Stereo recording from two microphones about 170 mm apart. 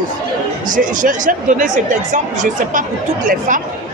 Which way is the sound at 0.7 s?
50° right (ahead or behind).